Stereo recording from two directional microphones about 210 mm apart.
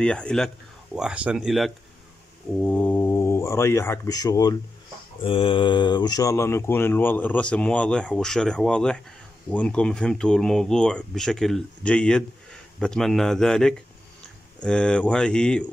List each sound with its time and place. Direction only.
0.0 s speech: 5° left (ahead or behind)